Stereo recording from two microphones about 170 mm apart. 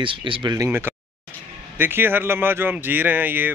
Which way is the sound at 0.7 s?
10° right (ahead or behind).